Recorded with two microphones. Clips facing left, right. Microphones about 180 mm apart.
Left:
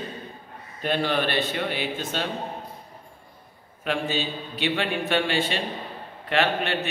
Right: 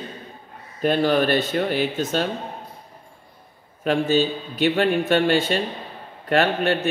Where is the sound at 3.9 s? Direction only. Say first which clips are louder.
Right 7 dB; 45° right (ahead or behind).